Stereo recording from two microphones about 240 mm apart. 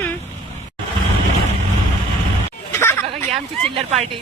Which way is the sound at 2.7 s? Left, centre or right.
Centre.